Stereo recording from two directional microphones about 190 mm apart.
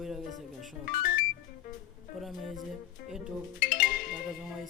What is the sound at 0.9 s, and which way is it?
Music, 45° left (ahead or behind).